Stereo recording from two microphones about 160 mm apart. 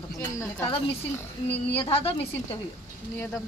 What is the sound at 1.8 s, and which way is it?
Speech, 35° left (ahead or behind).